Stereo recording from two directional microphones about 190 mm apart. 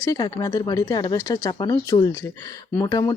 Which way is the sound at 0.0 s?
20° left (ahead or behind).